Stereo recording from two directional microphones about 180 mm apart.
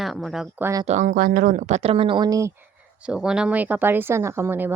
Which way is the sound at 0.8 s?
45° right (ahead or behind).